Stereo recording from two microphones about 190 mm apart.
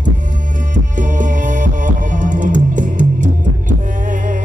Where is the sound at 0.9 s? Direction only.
45° right (ahead or behind).